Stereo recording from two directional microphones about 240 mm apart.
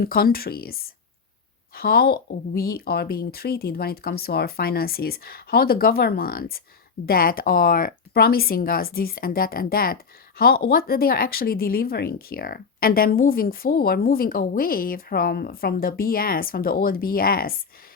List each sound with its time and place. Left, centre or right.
0.0 s a woman's voice: left